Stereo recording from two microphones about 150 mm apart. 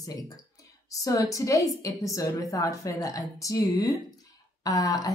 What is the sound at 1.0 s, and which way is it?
A woman's voice, 25° left (ahead or behind).